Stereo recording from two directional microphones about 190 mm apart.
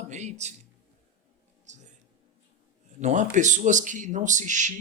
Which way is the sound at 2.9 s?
40° right (ahead or behind).